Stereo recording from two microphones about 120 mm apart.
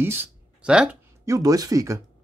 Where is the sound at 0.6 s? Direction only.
10° right (ahead or behind).